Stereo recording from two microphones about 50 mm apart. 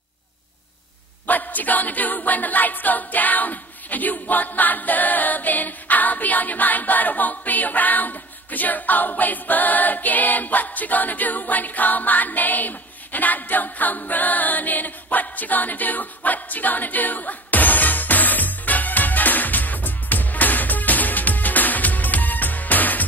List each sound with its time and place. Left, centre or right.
1.2 s a capella: left